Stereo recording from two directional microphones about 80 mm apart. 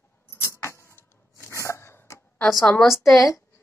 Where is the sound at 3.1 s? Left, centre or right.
Left.